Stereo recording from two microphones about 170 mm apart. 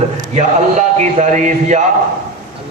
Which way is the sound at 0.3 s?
45° right (ahead or behind).